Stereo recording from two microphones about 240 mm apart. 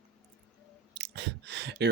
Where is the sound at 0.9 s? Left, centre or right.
Right.